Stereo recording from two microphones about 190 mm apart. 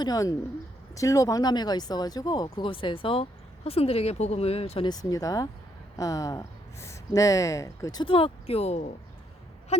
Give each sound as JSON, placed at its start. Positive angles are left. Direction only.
{"t": 0.0, "sound": "speech", "side_deg": 20}